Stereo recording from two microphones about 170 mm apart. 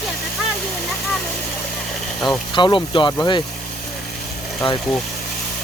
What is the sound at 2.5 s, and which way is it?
Speech, 30° left (ahead or behind).